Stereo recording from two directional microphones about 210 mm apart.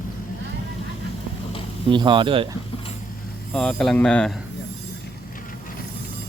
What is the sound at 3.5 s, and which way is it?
Speech, 5° left (ahead or behind).